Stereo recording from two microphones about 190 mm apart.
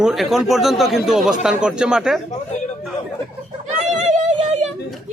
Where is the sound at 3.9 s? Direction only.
40° right (ahead or behind).